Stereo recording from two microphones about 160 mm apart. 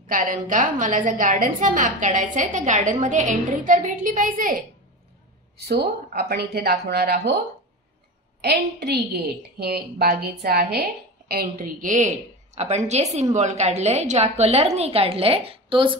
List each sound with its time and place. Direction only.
0.0 s a woman's voice: 55° right (ahead or behind)
5.7 s speech: 90° right
8.4 s a woman's voice: 90° right; by 15.9 s 35° right (ahead or behind)